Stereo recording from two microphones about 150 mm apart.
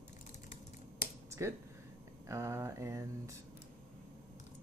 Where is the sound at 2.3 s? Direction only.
20° right (ahead or behind).